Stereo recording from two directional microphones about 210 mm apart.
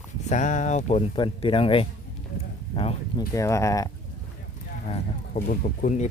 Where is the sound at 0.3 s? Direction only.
35° left (ahead or behind); by 3.8 s 15° left (ahead or behind).